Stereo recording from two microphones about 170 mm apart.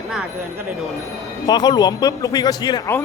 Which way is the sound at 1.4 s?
25° left (ahead or behind).